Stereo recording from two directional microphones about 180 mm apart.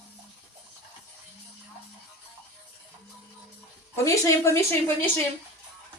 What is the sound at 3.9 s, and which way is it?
A woman's voice, 15° left (ahead or behind).